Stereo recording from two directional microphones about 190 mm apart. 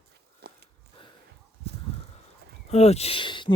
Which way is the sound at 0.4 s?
60° right (ahead or behind).